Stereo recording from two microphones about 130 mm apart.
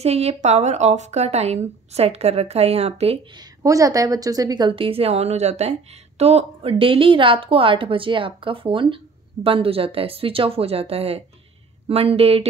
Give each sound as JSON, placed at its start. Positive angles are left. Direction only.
{"t": 0.0, "sound": "a woman's voice", "side_deg": -55}
{"t": 3.6, "sound": "a woman's voice", "side_deg": -25}